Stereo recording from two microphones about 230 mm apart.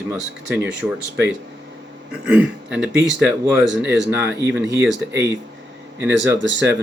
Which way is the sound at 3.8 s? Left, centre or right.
Right.